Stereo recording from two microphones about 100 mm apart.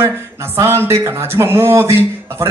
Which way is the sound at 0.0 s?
25° right (ahead or behind).